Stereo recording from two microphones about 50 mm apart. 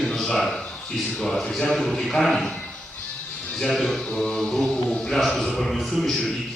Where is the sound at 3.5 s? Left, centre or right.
Centre.